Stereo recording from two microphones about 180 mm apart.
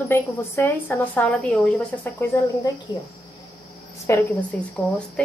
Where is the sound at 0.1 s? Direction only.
15° left (ahead or behind).